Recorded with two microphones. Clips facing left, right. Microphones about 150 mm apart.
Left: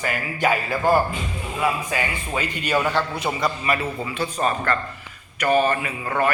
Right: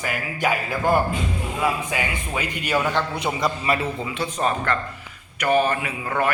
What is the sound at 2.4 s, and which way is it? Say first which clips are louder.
Speech: left 2 dB; 10° right (ahead or behind).